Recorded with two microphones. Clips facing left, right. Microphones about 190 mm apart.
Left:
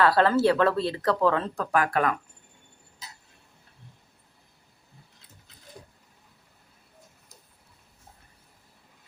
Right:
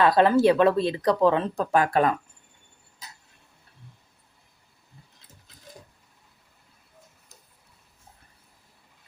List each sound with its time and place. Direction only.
0.0 s speech: 15° right (ahead or behind)